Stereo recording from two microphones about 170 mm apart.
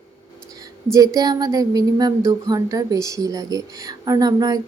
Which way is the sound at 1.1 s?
25° right (ahead or behind).